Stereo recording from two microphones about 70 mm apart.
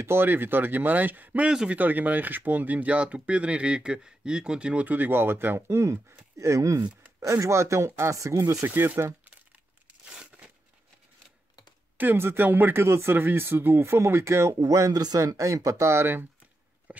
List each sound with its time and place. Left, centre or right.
0.0 s speech: right
1.5 s speech: centre
1.8 s speech: right
5.8 s speech: right
8.6 s speech: right
10.0 s a sound: centre
12.0 s speech: right
14.9 s a man's voice: right
15.2 s speech: right